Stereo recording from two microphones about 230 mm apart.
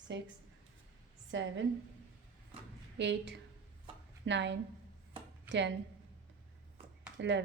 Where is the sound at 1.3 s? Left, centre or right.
Right.